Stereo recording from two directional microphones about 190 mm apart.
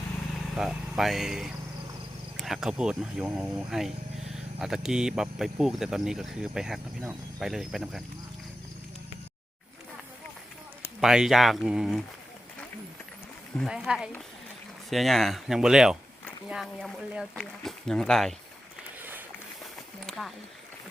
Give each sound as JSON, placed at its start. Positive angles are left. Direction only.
{"t": 0.5, "sound": "speech", "side_deg": 0}
{"t": 11.0, "sound": "speech", "side_deg": -5}
{"t": 13.6, "sound": "speech", "side_deg": -5}
{"t": 20.1, "sound": "speech", "side_deg": 0}